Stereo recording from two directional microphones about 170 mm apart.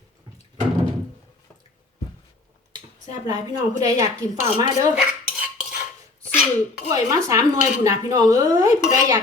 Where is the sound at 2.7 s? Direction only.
20° right (ahead or behind).